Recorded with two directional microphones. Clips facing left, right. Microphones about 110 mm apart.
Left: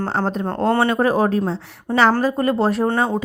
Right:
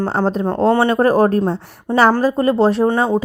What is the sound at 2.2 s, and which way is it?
Speech, 30° right (ahead or behind).